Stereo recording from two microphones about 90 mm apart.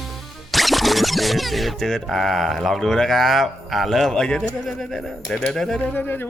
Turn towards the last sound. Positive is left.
turn(degrees=20)  # may be behind; listen again after turning